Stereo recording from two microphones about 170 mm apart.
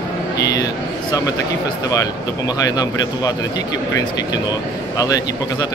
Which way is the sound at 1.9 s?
20° left (ahead or behind).